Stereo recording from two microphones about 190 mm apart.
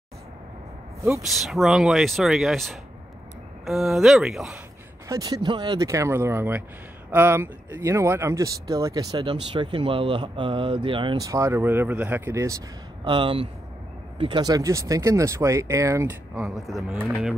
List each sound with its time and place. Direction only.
1.3 s speech: centre (ahead or behind)
5.0 s speech: 20° right (ahead or behind)
13.0 s speech: 25° right (ahead or behind); by 17.0 s centre (ahead or behind)